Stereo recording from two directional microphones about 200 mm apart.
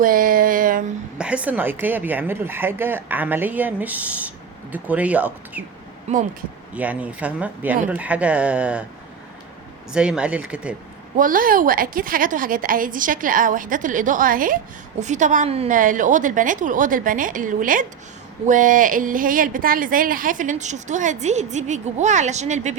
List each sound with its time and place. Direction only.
0.0 s a sound: 45° right (ahead or behind)
1.2 s speech: 5° right (ahead or behind)
6.1 s a woman's voice: 35° right (ahead or behind)
6.7 s speech: 5° right (ahead or behind)
9.9 s speech: 5° right (ahead or behind)
11.2 s a woman's voice: 45° right (ahead or behind)